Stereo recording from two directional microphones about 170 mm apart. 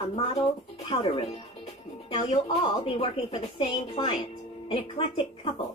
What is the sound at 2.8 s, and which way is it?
A woman's voice, 30° left (ahead or behind).